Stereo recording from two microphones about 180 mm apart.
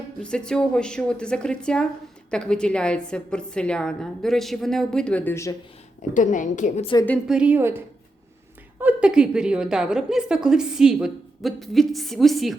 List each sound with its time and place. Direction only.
0.2 s a woman's voice: 5° left (ahead or behind)
6.1 s a woman's voice: 45° left (ahead or behind)
7.3 s a woman's voice: 5° right (ahead or behind)
8.8 s a woman's voice: 5° right (ahead or behind)